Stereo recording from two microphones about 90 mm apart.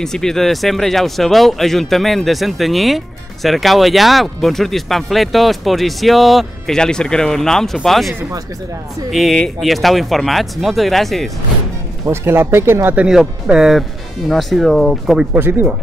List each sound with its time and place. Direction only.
0.0 s speech: 5° left (ahead or behind)
9.1 s speech: centre (ahead or behind)
12.1 s speech: 25° right (ahead or behind)
12.9 s speech: 10° right (ahead or behind)